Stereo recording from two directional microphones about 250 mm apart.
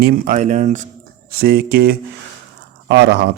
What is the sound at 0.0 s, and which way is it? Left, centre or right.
A man's voice, right.